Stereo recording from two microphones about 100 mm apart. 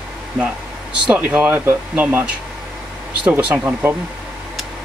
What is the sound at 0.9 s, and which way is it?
Speech, 10° right (ahead or behind).